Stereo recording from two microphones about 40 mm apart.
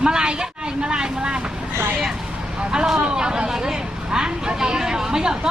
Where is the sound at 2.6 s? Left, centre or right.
Right.